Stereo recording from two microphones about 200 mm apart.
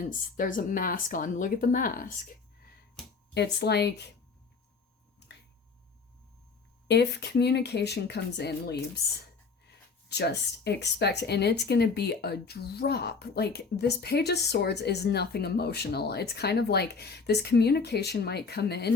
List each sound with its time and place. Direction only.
0.3 s speech: 40° left (ahead or behind)
3.3 s speech: 55° left (ahead or behind)
6.8 s speech: 60° left (ahead or behind)